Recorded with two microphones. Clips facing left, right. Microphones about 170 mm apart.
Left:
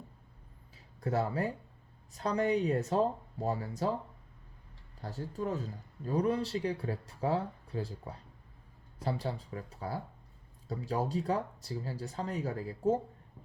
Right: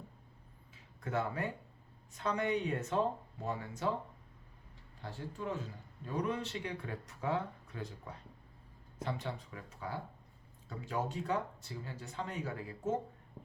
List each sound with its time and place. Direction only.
1.0 s a man's voice: 35° left (ahead or behind)
4.9 s a man's voice: 40° left (ahead or behind)